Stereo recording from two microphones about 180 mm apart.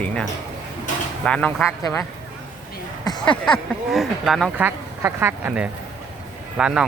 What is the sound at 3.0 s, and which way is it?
Speech, 20° left (ahead or behind).